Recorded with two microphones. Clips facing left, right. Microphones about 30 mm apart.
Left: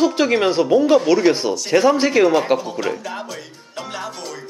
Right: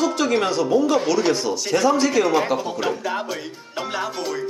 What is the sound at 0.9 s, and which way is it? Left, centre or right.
A man's voice, centre.